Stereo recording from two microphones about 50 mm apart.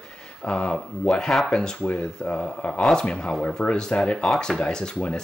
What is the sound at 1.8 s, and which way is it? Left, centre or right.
Speech, left.